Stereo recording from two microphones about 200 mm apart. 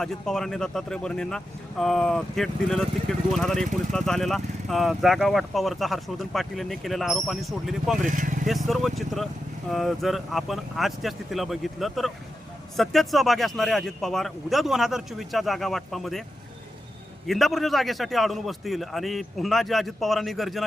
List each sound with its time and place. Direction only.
0.0 s speech: centre (ahead or behind)
8.0 s vehicle: 40° right (ahead or behind)
8.4 s speech: centre (ahead or behind)
17.2 s speech: centre (ahead or behind)